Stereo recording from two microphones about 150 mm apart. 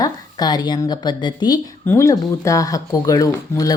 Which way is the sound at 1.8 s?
15° left (ahead or behind).